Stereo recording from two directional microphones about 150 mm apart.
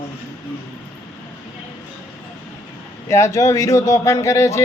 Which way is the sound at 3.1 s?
20° left (ahead or behind).